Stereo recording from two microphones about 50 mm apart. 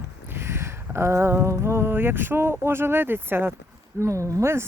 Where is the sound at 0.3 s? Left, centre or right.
Right.